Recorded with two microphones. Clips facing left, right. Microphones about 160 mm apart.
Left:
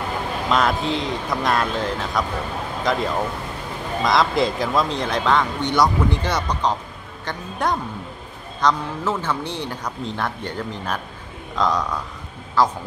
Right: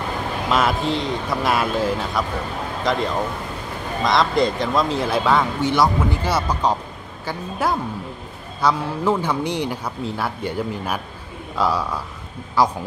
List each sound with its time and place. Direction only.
0.5 s speech: 5° right (ahead or behind)